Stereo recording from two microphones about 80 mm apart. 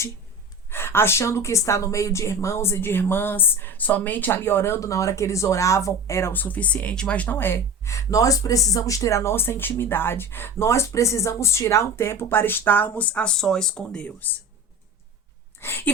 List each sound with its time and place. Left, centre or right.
0.7 s a woman's voice: left
6.3 s speech: left
15.6 s speech: left